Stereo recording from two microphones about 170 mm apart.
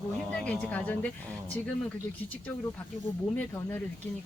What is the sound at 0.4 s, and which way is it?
Speech, 10° left (ahead or behind).